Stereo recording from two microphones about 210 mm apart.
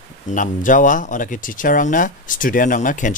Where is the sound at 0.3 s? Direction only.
40° left (ahead or behind).